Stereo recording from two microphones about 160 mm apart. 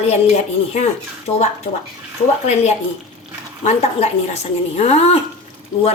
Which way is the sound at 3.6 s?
45° left (ahead or behind).